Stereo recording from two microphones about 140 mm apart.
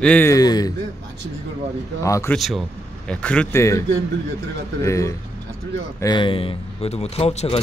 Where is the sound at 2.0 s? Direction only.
20° left (ahead or behind).